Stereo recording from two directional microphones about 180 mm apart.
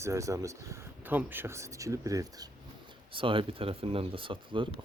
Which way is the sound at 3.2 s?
30° right (ahead or behind).